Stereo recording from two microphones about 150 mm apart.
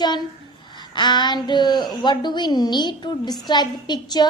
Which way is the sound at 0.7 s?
30° left (ahead or behind).